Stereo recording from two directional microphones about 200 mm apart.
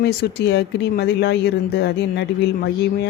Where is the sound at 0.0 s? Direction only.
55° left (ahead or behind).